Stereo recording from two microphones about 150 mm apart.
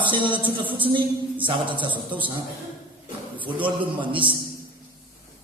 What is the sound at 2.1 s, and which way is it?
Speech, 35° right (ahead or behind).